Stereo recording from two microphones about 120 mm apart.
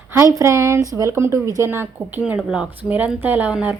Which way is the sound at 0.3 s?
25° right (ahead or behind).